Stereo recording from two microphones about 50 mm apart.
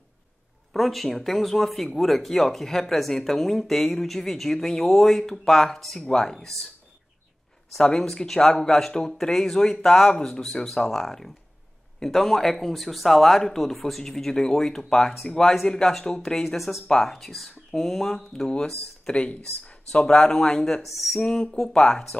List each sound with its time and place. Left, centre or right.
0.7 s speech: centre
7.7 s speech: centre
19.1 s speech: left
20.8 s speech: centre
21.2 s speech: centre